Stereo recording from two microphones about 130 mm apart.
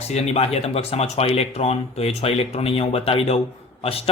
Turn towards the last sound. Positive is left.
turn(degrees=50)  # may be behind; listen again after turning